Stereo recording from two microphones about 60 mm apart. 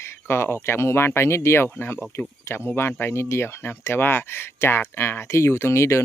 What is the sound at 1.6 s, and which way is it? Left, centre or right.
Speech, left.